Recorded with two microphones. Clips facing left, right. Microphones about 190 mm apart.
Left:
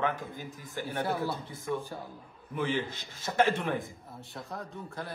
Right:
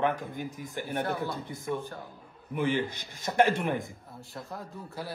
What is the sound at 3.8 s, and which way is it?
Speech, centre (ahead or behind).